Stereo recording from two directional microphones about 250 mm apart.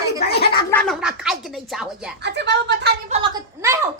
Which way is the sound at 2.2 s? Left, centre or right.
Right.